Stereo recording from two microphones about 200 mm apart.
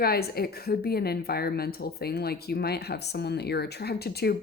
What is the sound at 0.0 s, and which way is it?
Speech, 50° left (ahead or behind).